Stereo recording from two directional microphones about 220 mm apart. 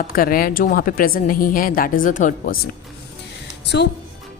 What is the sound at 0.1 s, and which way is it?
A woman's voice, 40° left (ahead or behind).